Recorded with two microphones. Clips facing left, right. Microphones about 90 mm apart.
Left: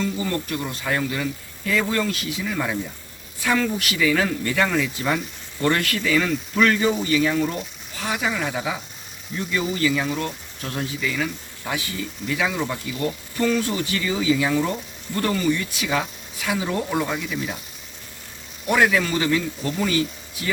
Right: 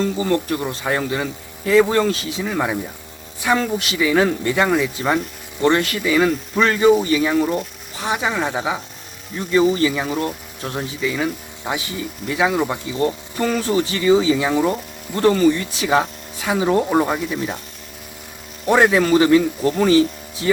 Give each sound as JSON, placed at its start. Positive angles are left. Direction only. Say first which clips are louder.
{"t": 0.0, "sound": "speech", "louder": "right 6 dB", "side_deg": -40}
{"t": 3.5, "sound": "speech", "louder": "right 3 dB", "side_deg": -25}
{"t": 7.9, "sound": "speech", "louder": "right 4 dB", "side_deg": -25}
{"t": 13.4, "sound": "speech", "louder": "right 3 dB", "side_deg": -40}
{"t": 18.7, "sound": "speech", "louder": "right 5 dB", "side_deg": -30}